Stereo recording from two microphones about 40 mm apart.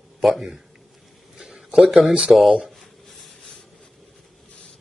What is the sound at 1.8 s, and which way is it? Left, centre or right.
Speech, centre.